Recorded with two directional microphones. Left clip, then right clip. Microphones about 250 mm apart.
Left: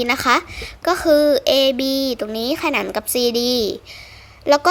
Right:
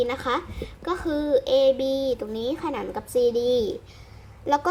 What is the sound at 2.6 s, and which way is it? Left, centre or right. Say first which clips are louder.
Speech: left 9 dB; left.